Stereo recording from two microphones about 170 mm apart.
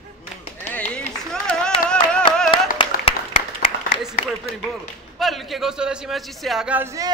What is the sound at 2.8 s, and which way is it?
Applause, 35° left (ahead or behind).